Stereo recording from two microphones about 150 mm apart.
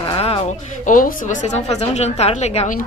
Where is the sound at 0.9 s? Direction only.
65° left (ahead or behind).